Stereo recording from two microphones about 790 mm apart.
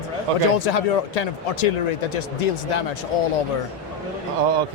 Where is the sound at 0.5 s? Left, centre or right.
Left.